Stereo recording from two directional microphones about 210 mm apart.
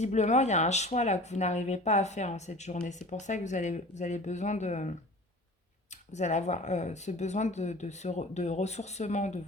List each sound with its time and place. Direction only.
0.0 s speech: 35° left (ahead or behind)
6.1 s speech: 35° left (ahead or behind)